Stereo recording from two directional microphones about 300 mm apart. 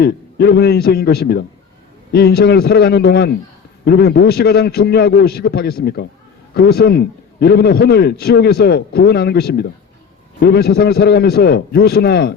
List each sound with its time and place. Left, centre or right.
0.0 s a man's voice: left